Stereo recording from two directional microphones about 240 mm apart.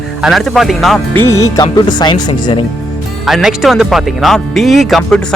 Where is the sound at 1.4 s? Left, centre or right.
Centre.